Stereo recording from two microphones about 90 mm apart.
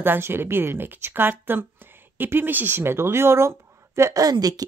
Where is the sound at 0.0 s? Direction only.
25° right (ahead or behind).